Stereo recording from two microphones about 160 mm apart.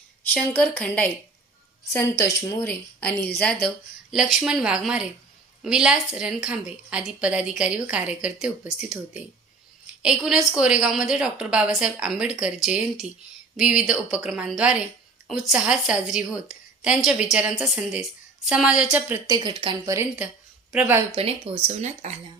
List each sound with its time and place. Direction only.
0.3 s speech: 10° left (ahead or behind)
4.1 s a woman's voice: centre (ahead or behind)
19.3 s speech: 25° right (ahead or behind)
21.2 s speech: 35° right (ahead or behind)